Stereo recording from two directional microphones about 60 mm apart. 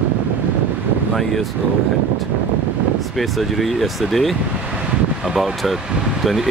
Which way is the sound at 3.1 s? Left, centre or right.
Centre.